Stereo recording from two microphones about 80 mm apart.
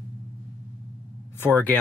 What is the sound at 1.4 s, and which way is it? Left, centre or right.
Speech, left.